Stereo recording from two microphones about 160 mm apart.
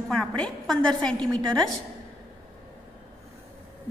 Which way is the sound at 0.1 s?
Centre (ahead or behind).